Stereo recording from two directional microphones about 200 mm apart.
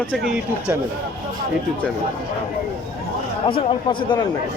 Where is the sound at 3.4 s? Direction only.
25° left (ahead or behind).